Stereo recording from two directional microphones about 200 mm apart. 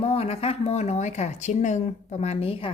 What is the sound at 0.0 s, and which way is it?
Speech, 30° left (ahead or behind).